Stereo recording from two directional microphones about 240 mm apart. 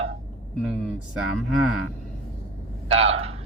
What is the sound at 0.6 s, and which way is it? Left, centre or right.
Speech, centre.